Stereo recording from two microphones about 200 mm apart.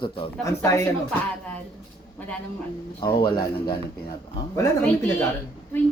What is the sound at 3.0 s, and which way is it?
Speech, 20° left (ahead or behind).